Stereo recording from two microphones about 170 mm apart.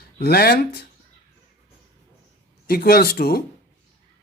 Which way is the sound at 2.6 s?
65° left (ahead or behind).